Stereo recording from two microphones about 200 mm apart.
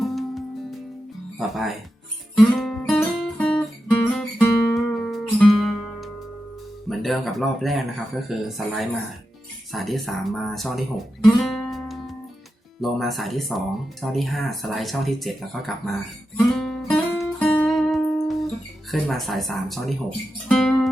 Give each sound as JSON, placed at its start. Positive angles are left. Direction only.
{"t": 0.0, "sound": "music", "side_deg": 0}
{"t": 1.4, "sound": "speech", "side_deg": 0}
{"t": 2.4, "sound": "guitar", "side_deg": 5}
{"t": 4.2, "sound": "music", "side_deg": 0}
{"t": 6.8, "sound": "speech", "side_deg": 0}
{"t": 16.5, "sound": "music", "side_deg": 5}
{"t": 18.9, "sound": "speech", "side_deg": 0}
{"t": 20.5, "sound": "music", "side_deg": 5}